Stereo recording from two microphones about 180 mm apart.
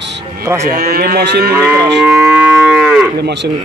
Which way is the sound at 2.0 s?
Centre (ahead or behind).